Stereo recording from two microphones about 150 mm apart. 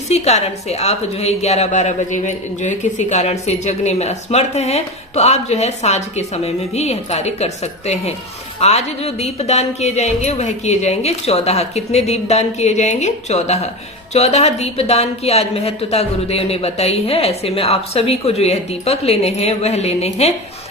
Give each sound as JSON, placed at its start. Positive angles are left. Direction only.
{"t": 0.1, "sound": "a woman's voice", "side_deg": 45}